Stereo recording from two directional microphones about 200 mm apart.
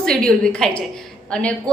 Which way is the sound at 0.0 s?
5° left (ahead or behind).